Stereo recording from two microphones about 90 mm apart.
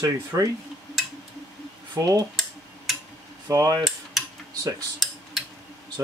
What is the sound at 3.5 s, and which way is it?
Speech, 40° right (ahead or behind).